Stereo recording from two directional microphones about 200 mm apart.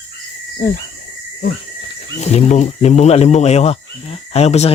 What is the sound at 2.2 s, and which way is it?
Speech, 30° left (ahead or behind).